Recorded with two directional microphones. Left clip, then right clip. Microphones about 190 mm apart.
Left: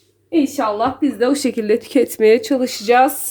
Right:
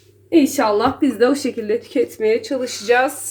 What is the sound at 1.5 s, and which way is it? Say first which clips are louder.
Speech: left 4 dB; 55° left (ahead or behind).